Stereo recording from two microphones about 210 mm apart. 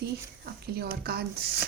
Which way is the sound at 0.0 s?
50° right (ahead or behind).